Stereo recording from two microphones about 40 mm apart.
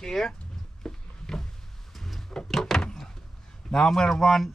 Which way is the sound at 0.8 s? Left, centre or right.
Centre.